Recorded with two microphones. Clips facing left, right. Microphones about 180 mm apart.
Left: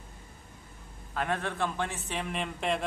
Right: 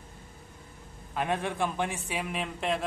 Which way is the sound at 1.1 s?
15° right (ahead or behind).